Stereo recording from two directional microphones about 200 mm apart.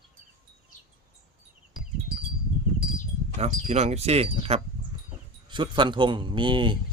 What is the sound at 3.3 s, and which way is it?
A man's voice, 35° right (ahead or behind).